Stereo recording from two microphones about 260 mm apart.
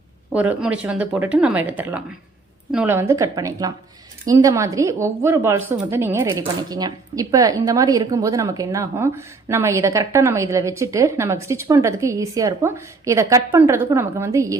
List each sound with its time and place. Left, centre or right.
0.3 s a woman's voice: centre